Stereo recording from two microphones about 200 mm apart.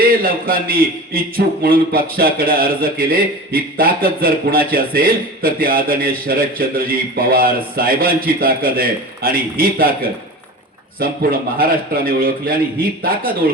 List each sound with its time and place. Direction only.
0.0 s a man's voice: 45° right (ahead or behind)
11.0 s a man's voice: 45° right (ahead or behind)